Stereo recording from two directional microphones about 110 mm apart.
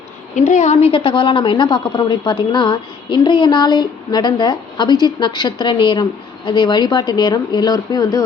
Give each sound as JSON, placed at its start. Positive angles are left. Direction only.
{"t": 0.3, "sound": "a woman's voice", "side_deg": 90}
{"t": 0.9, "sound": "a woman's voice", "side_deg": 50}